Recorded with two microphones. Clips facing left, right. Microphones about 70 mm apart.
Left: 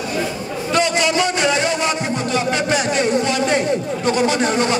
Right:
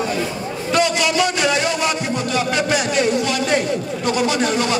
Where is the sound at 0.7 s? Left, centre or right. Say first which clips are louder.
Even; left.